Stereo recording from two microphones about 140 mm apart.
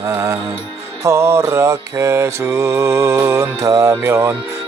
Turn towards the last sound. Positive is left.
turn(degrees=-15)  # may be behind; listen again after turning